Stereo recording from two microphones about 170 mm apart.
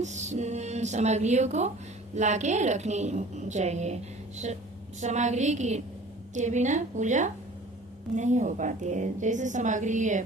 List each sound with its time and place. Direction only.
0.0 s a woman's voice: 45° right (ahead or behind)